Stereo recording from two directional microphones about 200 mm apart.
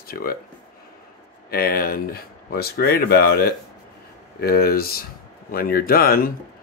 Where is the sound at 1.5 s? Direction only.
50° left (ahead or behind).